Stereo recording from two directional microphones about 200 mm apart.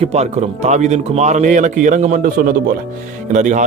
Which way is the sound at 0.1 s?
35° right (ahead or behind).